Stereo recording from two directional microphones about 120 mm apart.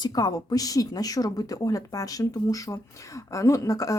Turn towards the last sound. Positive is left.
turn(degrees=30)  # may be behind; listen again after turning